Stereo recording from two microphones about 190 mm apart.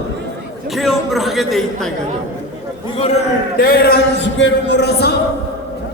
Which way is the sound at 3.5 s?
55° left (ahead or behind).